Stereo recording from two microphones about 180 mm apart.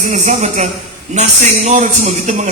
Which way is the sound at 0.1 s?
40° right (ahead or behind).